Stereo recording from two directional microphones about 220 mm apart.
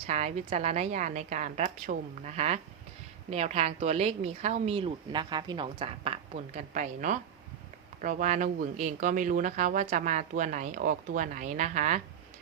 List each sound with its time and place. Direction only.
0.1 s speech: 30° right (ahead or behind)